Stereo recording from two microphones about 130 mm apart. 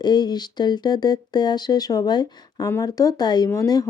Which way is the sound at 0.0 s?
35° left (ahead or behind).